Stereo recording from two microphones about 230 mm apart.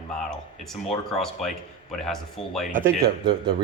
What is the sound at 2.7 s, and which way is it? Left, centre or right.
Speech, right.